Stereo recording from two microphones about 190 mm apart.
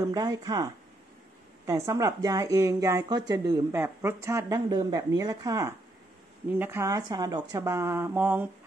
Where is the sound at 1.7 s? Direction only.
15° right (ahead or behind).